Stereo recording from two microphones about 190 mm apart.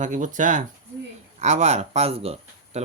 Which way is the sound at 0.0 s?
40° right (ahead or behind).